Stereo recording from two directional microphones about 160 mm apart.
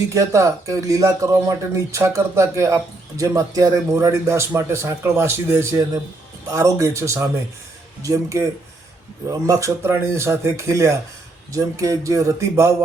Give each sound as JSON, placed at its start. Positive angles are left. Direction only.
{"t": 0.1, "sound": "speech", "side_deg": -20}